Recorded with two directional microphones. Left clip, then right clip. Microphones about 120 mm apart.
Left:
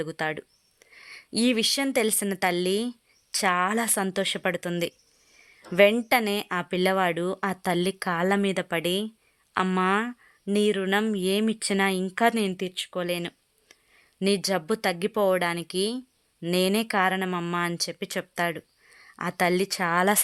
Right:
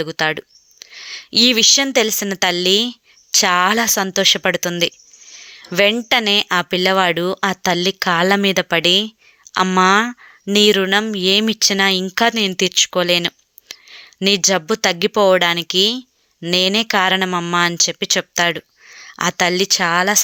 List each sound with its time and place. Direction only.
0.0 s speech: 20° right (ahead or behind)
3.8 s speech: 10° right (ahead or behind)
8.2 s speech: 25° right (ahead or behind)
12.5 s speech: 40° right (ahead or behind); by 20.2 s 5° right (ahead or behind)